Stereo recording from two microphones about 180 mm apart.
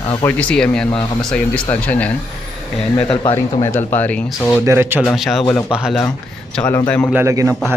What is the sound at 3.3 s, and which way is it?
Speech, 15° left (ahead or behind).